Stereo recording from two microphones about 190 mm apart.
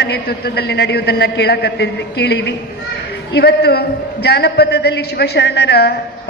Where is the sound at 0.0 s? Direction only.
60° left (ahead or behind).